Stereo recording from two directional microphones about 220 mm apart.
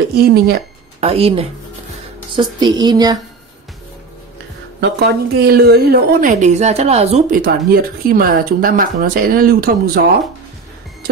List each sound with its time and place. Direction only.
0.1 s a woman's voice: 45° right (ahead or behind)
1.0 s speech: 25° right (ahead or behind)
4.7 s a woman's voice: 45° right (ahead or behind)
6.4 s speech: 30° right (ahead or behind)
7.4 s speech: 45° right (ahead or behind)